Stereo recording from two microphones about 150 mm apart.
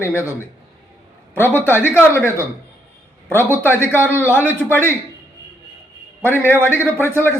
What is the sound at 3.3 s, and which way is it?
Speech, 15° left (ahead or behind).